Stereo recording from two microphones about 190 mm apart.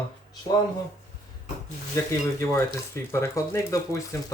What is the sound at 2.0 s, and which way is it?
Speech, 15° left (ahead or behind).